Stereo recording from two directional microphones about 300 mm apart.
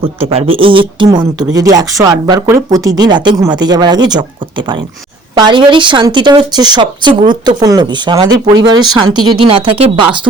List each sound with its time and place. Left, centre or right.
0.0 s speech: centre